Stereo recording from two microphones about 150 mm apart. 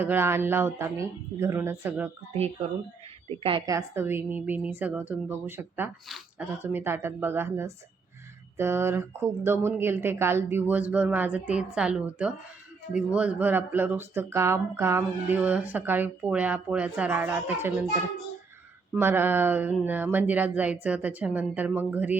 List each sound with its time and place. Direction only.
0.0 s speech: 15° right (ahead or behind)
3.2 s speech: 40° right (ahead or behind)
3.7 s speech: 20° right (ahead or behind)
18.9 s speech: 15° right (ahead or behind)